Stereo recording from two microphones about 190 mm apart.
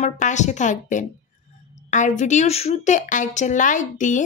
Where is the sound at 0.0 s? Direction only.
40° left (ahead or behind).